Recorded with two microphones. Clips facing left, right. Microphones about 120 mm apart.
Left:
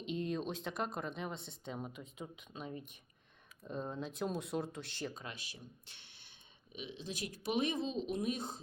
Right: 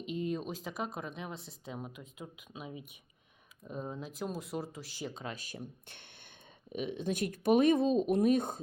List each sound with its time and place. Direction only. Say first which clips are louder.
0.0 s speech: right 2 dB; 5° right (ahead or behind)
5.0 s speech: right 3 dB; 25° right (ahead or behind)
5.3 s speech: right 7 dB; 45° right (ahead or behind)